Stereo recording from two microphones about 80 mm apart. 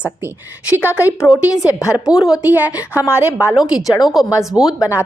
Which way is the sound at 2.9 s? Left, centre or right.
Left.